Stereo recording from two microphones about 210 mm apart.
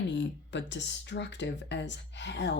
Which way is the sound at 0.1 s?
60° left (ahead or behind).